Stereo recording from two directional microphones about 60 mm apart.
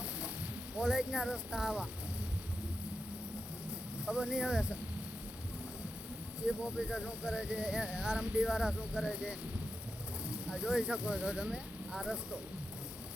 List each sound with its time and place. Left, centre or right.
0.8 s speech: centre
4.0 s speech: centre
6.4 s speech: centre